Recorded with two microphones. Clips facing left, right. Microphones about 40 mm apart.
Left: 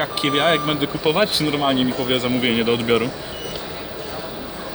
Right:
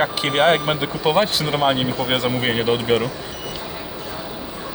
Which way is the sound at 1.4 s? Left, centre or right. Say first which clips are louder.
Even; centre.